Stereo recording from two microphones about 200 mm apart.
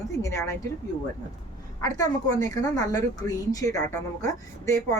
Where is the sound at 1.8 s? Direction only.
15° left (ahead or behind).